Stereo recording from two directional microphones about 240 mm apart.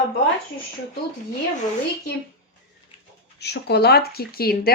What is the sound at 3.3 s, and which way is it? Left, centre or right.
Speech, left.